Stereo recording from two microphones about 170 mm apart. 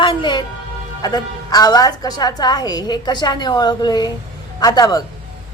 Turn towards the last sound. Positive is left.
turn(degrees=20)  # may be behind; listen again after turning